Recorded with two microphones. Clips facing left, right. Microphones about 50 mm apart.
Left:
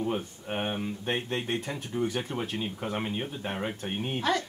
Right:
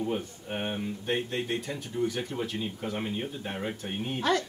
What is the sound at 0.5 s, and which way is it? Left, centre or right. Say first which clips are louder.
Speech: left 1 dB; left.